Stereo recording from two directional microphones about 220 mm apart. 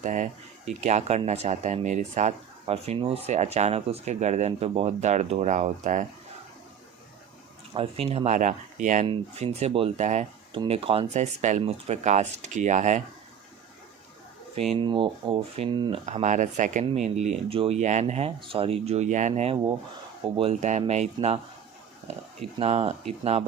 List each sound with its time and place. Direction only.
0.0 s speech: 35° right (ahead or behind)
7.7 s speech: 25° right (ahead or behind)
14.5 s speech: 25° right (ahead or behind)
16.0 s speech: 35° right (ahead or behind)
22.5 s speech: 25° right (ahead or behind)